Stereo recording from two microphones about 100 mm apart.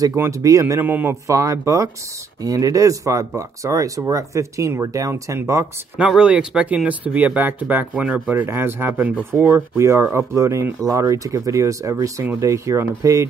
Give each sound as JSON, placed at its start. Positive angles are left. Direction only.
{"t": 0.0, "sound": "speech", "side_deg": -30}
{"t": 0.7, "sound": "speech", "side_deg": -20}
{"t": 1.2, "sound": "speech", "side_deg": -35}
{"t": 5.9, "sound": "speech", "side_deg": -10}